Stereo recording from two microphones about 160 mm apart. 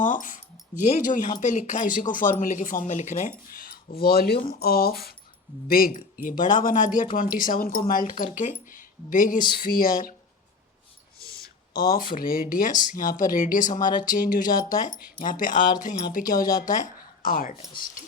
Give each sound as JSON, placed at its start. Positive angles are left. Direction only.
{"t": 0.0, "sound": "speech", "side_deg": 55}
{"t": 11.9, "sound": "speech", "side_deg": 60}